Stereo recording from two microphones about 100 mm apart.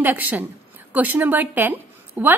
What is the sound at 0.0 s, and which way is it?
A woman's voice, 15° right (ahead or behind).